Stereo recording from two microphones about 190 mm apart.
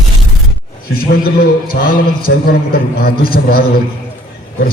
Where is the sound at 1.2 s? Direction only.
50° left (ahead or behind).